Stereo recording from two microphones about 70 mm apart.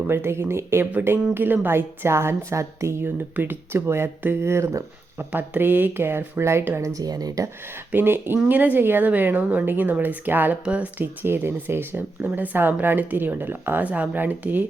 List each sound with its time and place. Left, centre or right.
0.1 s a woman's voice: right
3.0 s a woman's voice: right
5.3 s a woman's voice: right
6.8 s speech: right
7.9 s speech: right